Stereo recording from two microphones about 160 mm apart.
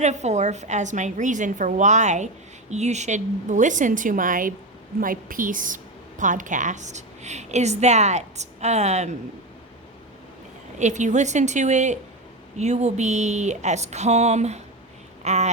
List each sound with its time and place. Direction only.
0.0 s a woman's voice: 45° right (ahead or behind)
10.8 s a woman's voice: 50° right (ahead or behind)